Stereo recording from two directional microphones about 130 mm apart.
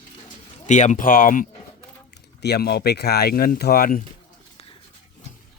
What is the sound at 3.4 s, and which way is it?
Speech, 90° left.